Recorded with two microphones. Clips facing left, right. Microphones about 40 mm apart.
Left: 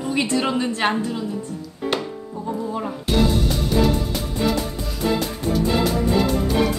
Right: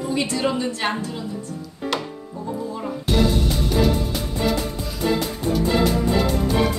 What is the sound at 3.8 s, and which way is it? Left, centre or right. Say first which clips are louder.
Music: even; centre.